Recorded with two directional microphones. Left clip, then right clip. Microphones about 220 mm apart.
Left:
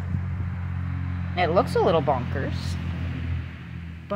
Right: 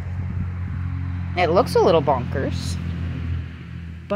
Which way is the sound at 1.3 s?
30° right (ahead or behind).